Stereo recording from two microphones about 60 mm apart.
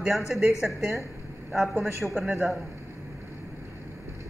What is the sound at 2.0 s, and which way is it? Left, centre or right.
Speech, centre.